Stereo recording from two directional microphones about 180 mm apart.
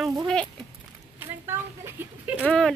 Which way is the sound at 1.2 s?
15° right (ahead or behind).